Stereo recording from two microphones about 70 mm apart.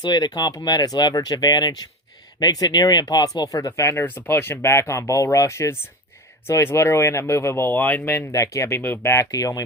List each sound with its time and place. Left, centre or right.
0.0 s speech: left
4.0 s speech: left
8.3 s speech: left
9.3 s speech: left